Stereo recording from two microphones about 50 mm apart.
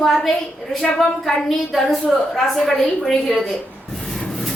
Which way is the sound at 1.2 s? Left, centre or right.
Centre.